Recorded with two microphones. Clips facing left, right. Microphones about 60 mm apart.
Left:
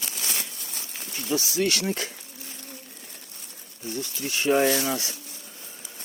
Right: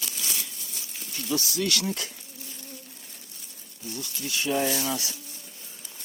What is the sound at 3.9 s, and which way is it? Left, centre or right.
Speech, left.